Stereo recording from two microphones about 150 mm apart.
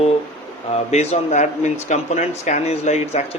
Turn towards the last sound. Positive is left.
turn(degrees=45)  # may be behind; listen again after turning